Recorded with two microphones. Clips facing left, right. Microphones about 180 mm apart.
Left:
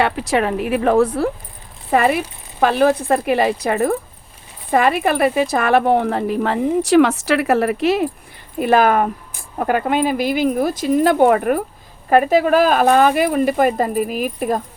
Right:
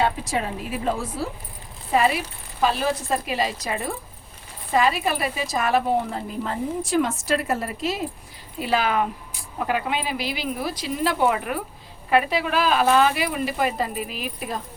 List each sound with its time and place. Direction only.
0.0 s speech: 75° left (ahead or behind)
8.5 s speech: 50° left (ahead or behind)